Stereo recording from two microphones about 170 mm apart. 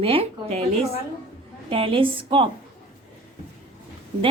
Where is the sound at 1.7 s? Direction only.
30° right (ahead or behind).